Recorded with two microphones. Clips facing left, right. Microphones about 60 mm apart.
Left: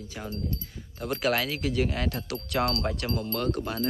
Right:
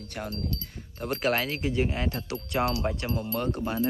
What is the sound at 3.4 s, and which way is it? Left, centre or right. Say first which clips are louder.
Speech: even; centre.